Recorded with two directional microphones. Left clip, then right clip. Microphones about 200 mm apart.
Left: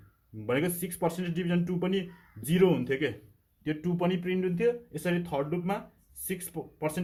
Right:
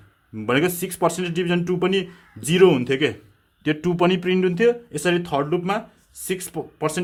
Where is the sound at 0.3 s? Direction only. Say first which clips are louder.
Right 9 dB; 40° right (ahead or behind).